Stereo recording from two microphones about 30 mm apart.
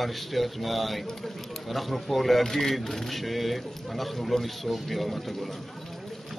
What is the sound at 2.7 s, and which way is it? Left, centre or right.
A man's voice, centre.